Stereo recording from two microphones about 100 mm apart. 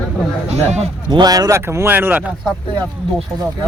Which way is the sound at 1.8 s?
15° right (ahead or behind).